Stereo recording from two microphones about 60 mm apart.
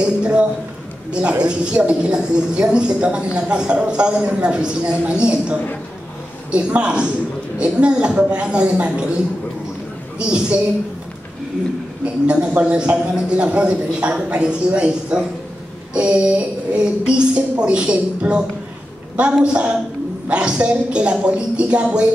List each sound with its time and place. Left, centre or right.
0.0 s speech: centre
12.0 s speech: centre